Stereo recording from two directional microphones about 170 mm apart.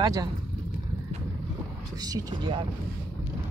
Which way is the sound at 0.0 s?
20° right (ahead or behind).